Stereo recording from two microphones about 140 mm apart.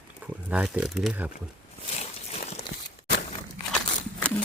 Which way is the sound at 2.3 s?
50° left (ahead or behind).